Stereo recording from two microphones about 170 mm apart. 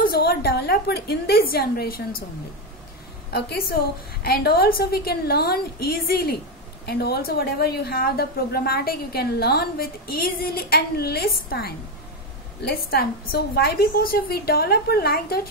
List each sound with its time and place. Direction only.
0.0 s a woman's voice: 60° left (ahead or behind)
3.3 s a woman's voice: 70° left (ahead or behind)